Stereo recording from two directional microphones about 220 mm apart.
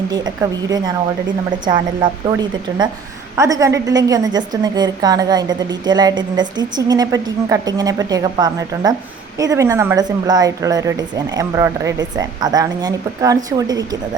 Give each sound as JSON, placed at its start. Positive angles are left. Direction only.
{"t": 0.1, "sound": "speech", "side_deg": -20}
{"t": 2.0, "sound": "speech", "side_deg": -20}